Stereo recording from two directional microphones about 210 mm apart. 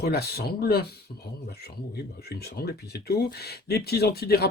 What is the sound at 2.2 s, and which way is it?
Speech, 50° left (ahead or behind).